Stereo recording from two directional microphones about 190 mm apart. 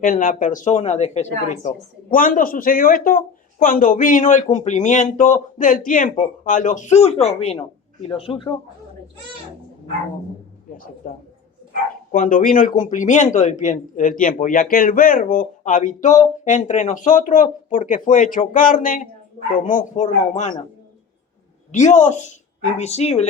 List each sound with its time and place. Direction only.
0.0 s a woman's voice: 45° left (ahead or behind); by 8.5 s 30° left (ahead or behind)
11.0 s a man's voice: 45° left (ahead or behind)
21.7 s a woman's voice: 40° left (ahead or behind)